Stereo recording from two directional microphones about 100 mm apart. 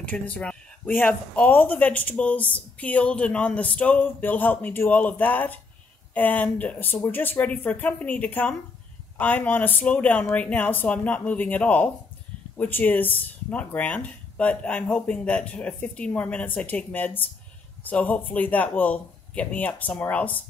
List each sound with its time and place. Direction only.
0.1 s speech: 15° left (ahead or behind)